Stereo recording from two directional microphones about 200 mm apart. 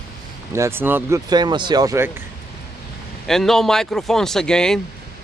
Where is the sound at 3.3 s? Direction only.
Centre (ahead or behind).